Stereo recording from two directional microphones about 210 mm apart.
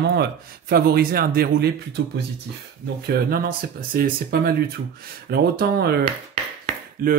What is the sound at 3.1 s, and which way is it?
Speech, 45° right (ahead or behind).